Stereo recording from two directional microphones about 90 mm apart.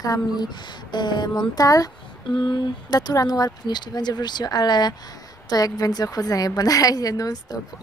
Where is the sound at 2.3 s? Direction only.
55° left (ahead or behind).